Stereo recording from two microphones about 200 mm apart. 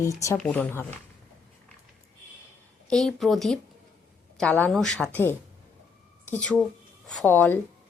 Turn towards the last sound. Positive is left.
turn(degrees=10)  # may be behind; listen again after turning